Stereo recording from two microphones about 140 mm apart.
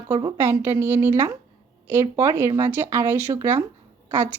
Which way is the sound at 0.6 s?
15° right (ahead or behind).